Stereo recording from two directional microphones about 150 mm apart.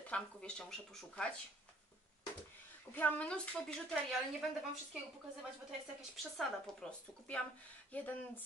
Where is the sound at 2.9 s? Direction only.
10° left (ahead or behind).